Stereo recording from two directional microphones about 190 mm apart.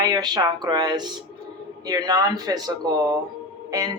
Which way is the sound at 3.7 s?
15° right (ahead or behind).